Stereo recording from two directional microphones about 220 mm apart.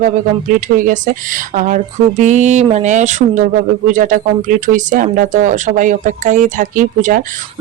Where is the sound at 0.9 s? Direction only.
35° right (ahead or behind).